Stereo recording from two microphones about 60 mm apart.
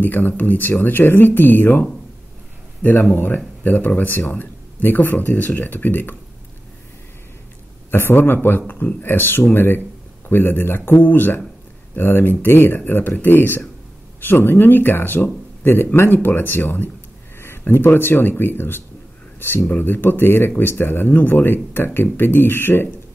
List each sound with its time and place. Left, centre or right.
0.0 s speech: left
7.9 s speech: left